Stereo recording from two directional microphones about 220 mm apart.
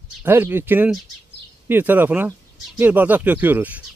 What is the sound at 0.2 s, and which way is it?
Speech, 10° right (ahead or behind).